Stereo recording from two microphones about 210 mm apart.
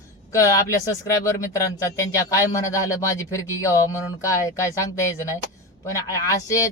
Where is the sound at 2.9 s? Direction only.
15° left (ahead or behind).